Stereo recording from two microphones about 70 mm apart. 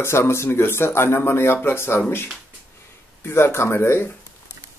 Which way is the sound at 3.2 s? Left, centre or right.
Left.